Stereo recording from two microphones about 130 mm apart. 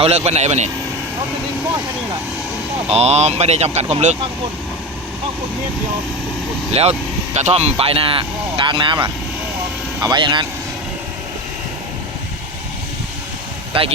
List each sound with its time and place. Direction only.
0.0 s speech: 55° right (ahead or behind)
2.9 s speech: 55° right (ahead or behind)
6.8 s speech: 50° right (ahead or behind)
13.7 s speech: 45° right (ahead or behind)